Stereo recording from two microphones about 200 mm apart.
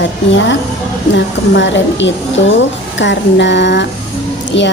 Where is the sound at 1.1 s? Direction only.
65° left (ahead or behind).